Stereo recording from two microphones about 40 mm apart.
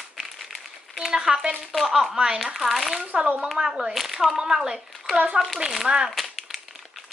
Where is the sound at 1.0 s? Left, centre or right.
Centre.